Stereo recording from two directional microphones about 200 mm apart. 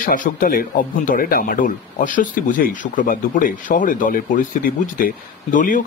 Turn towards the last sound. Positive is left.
turn(degrees=40)  # may be behind; listen again after turning